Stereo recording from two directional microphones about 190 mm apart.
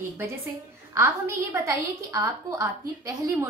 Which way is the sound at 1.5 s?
15° right (ahead or behind).